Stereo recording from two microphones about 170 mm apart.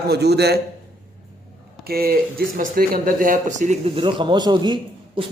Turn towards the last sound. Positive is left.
turn(degrees=-25)  # may be behind; listen again after turning